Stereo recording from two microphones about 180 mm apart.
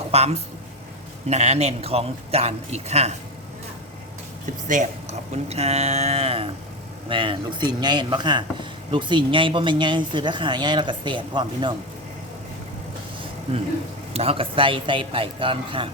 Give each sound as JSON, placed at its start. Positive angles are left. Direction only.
{"t": 0.1, "sound": "a man's voice", "side_deg": -35}
{"t": 4.7, "sound": "a man's voice", "side_deg": -40}
{"t": 14.1, "sound": "speech", "side_deg": -35}